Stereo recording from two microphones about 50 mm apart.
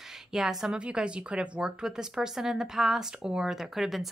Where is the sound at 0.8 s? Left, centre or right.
Right.